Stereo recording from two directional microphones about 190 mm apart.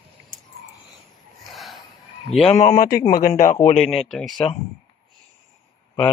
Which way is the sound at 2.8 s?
50° left (ahead or behind).